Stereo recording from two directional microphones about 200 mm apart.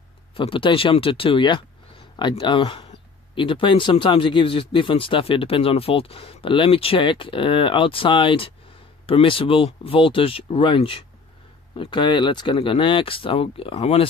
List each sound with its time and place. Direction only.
0.4 s speech: 25° left (ahead or behind)